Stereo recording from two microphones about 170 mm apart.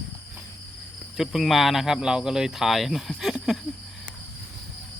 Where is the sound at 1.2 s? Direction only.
Centre (ahead or behind).